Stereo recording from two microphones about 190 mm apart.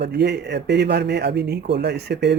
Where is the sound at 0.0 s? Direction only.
60° right (ahead or behind).